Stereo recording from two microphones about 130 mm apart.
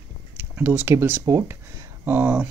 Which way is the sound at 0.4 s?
15° right (ahead or behind).